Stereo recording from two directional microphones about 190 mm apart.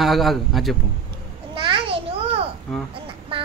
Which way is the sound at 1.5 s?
25° right (ahead or behind).